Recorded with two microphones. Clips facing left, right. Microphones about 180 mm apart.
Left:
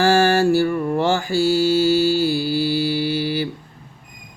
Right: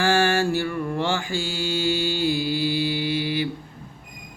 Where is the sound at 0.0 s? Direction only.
40° left (ahead or behind).